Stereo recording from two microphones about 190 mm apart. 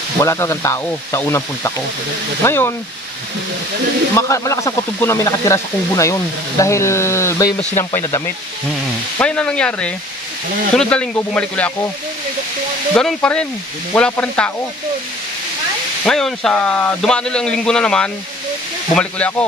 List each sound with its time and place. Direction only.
0.2 s speech: 15° left (ahead or behind)
4.1 s speech: 15° left (ahead or behind)
9.2 s a man's voice: 5° left (ahead or behind)
12.9 s a man's voice: 5° left (ahead or behind)
16.1 s a man's voice: centre (ahead or behind)